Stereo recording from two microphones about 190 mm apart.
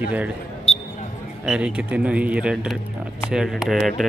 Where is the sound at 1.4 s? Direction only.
5° right (ahead or behind).